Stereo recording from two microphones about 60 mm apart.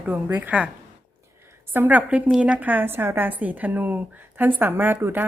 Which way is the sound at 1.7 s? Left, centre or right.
Right.